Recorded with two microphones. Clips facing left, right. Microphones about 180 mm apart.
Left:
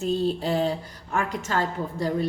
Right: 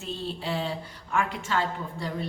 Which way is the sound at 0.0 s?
40° left (ahead or behind).